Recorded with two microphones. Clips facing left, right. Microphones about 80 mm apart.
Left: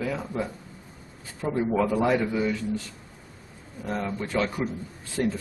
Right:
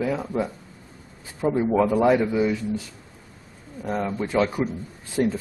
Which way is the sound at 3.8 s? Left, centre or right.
Centre.